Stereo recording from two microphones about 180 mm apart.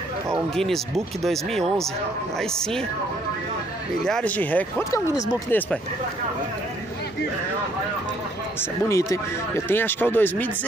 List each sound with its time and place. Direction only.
0.6 s speech: centre (ahead or behind)
4.0 s speech: 5° left (ahead or behind)
8.5 s speech: 15° left (ahead or behind)